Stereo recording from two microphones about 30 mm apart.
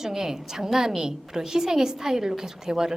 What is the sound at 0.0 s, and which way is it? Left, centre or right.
A woman's voice, centre.